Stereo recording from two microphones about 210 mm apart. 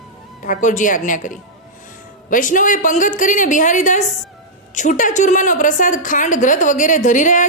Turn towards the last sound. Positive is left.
turn(degrees=35)  # may be behind; listen again after turning